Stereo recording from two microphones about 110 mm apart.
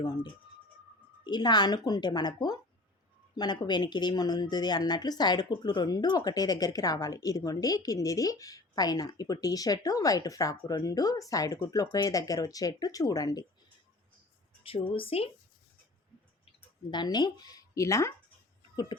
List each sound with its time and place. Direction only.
0.0 s speech: 40° left (ahead or behind)
14.6 s a woman's voice: 55° left (ahead or behind)
16.5 s speech: 40° left (ahead or behind)